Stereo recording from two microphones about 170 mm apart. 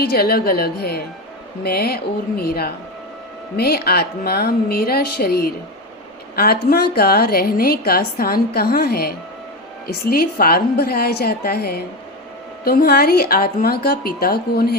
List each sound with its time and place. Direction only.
0.0 s a woman's voice: 65° left (ahead or behind)